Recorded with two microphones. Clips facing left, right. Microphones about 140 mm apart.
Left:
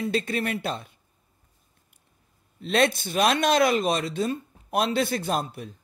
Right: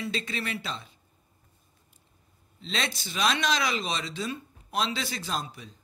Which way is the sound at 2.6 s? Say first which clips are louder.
Left 11 dB; 55° left (ahead or behind).